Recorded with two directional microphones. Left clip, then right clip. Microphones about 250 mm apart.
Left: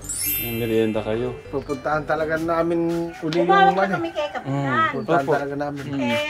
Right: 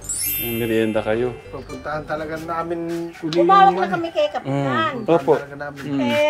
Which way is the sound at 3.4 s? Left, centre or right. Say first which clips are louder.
Right 3 dB; right.